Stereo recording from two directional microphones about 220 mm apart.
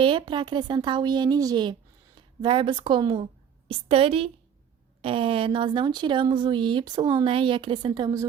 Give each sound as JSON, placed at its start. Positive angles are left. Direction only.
{"t": 0.0, "sound": "speech", "side_deg": -20}